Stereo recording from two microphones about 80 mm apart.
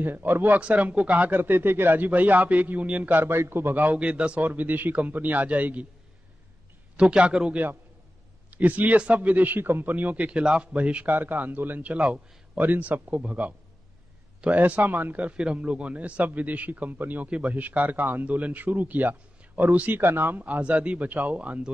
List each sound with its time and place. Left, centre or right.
0.0 s a man's voice: right
7.0 s a man's voice: centre